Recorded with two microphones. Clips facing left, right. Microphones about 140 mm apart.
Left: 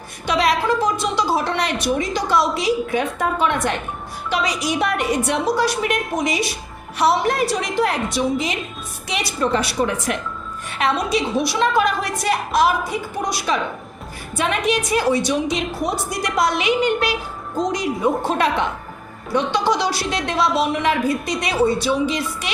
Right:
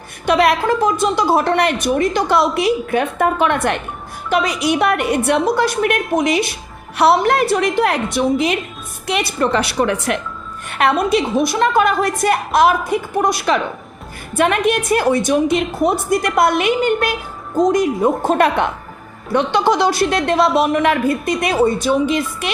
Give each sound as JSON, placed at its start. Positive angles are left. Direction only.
{"t": 0.3, "sound": "a woman's voice", "side_deg": -55}
{"t": 10.7, "sound": "a woman's voice", "side_deg": -60}